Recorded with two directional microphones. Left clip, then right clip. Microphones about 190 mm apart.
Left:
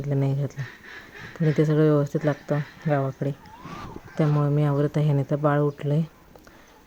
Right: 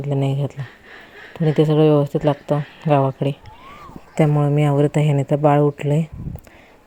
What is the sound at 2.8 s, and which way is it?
Speech, 20° right (ahead or behind).